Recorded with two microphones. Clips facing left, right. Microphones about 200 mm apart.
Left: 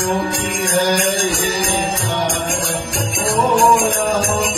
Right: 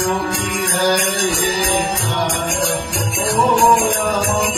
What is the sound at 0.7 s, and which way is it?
Mantra, 10° left (ahead or behind).